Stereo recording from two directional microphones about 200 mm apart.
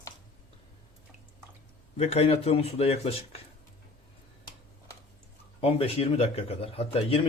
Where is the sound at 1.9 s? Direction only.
30° left (ahead or behind).